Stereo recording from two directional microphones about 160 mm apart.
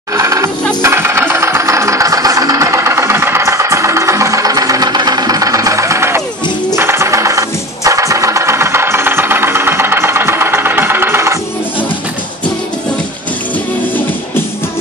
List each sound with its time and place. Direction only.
0.1 s music: 20° right (ahead or behind)
0.8 s a sound: 15° right (ahead or behind)
6.7 s engine: 15° right (ahead or behind)